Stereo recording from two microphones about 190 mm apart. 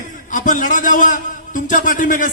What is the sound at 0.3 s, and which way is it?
A man's voice, 45° left (ahead or behind).